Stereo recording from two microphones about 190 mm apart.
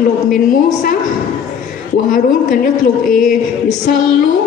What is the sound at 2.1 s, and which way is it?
A woman's voice, 45° left (ahead or behind).